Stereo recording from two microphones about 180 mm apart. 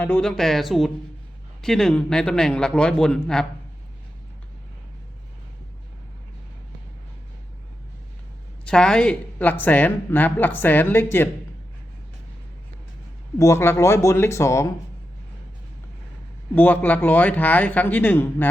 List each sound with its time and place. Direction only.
0.0 s a man's voice: 5° left (ahead or behind)
8.6 s speech: 5° left (ahead or behind)
13.4 s speech: 15° left (ahead or behind)
16.6 s speech: 10° left (ahead or behind)